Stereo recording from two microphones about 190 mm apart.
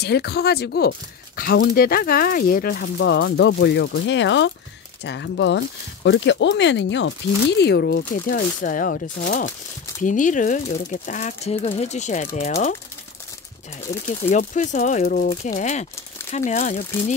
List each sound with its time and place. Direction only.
0.0 s speech: 60° left (ahead or behind)
3.0 s speech: 65° left (ahead or behind)
8.1 s speech: 45° left (ahead or behind)
13.9 s speech: 15° left (ahead or behind)
14.3 s speech: 40° left (ahead or behind)